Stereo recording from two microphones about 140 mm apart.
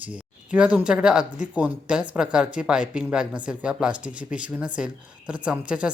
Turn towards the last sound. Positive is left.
turn(degrees=-5)  # may be behind; listen again after turning